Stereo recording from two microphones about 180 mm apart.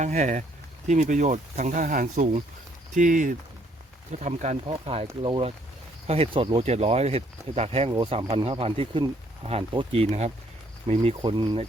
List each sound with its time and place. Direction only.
0.0 s speech: 40° right (ahead or behind); by 11.6 s 25° right (ahead or behind)